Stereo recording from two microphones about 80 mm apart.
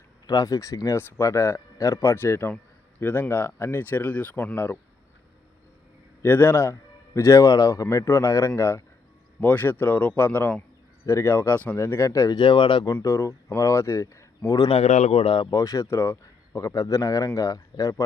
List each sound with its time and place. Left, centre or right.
0.3 s a man's voice: left
6.2 s a man's voice: left
9.4 s speech: left
11.0 s speech: left
11.8 s a man's voice: left
12.3 s speech: left
13.1 s a man's voice: left